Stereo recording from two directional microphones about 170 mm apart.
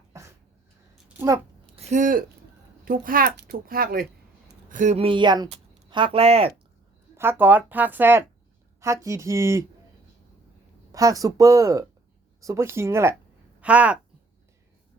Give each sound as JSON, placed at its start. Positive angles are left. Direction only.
{"t": 0.1, "sound": "a sound", "side_deg": -15}
{"t": 1.7, "sound": "a woman's voice", "side_deg": -40}
{"t": 4.7, "sound": "speech", "side_deg": -45}
{"t": 5.0, "sound": "speech", "side_deg": -25}
{"t": 7.2, "sound": "speech", "side_deg": -10}
{"t": 10.9, "sound": "speech", "side_deg": -20}